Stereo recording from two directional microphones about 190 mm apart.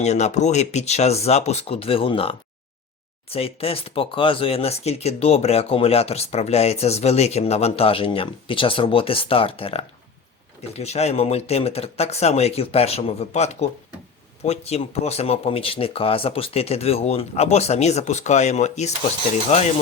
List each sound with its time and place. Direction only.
0.0 s speech: 35° left (ahead or behind)